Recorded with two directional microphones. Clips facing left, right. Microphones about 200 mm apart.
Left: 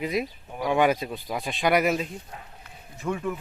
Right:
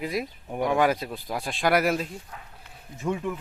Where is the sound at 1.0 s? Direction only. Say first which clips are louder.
Left 1 dB; centre (ahead or behind).